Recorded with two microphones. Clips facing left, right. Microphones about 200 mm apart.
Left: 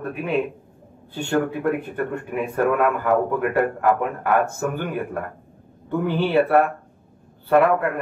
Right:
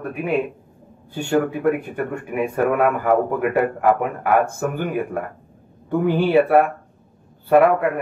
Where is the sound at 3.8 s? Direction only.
10° right (ahead or behind).